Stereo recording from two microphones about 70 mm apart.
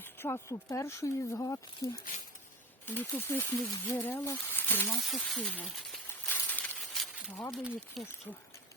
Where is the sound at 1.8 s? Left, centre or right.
Left.